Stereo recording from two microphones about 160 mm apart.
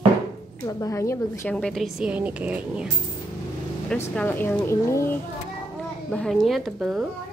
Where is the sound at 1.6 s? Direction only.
Centre (ahead or behind).